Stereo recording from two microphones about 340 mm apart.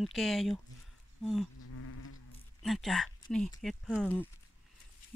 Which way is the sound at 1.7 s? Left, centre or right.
Left.